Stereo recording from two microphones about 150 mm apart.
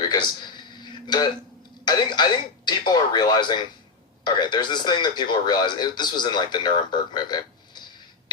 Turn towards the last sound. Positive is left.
turn(degrees=30)  # may be behind; listen again after turning